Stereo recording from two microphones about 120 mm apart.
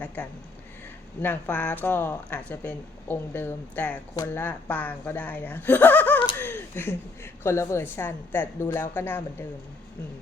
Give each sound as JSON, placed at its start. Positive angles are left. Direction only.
{"t": 1.2, "sound": "speech", "side_deg": 15}
{"t": 6.3, "sound": "a sound", "side_deg": 20}
{"t": 7.4, "sound": "a woman's voice", "side_deg": 25}